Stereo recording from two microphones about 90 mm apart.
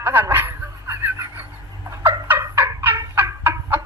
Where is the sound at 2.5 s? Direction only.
25° right (ahead or behind).